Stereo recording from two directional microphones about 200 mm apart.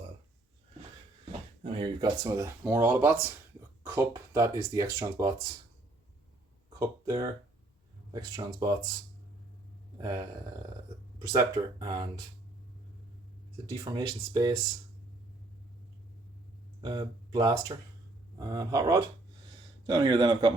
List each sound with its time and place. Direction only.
1.2 s speech: 25° right (ahead or behind)
6.7 s speech: 20° right (ahead or behind)
10.0 s speech: 15° right (ahead or behind)
13.7 s speech: 20° right (ahead or behind)
16.8 s speech: 20° right (ahead or behind)